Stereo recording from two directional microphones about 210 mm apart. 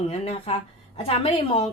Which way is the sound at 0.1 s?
30° left (ahead or behind).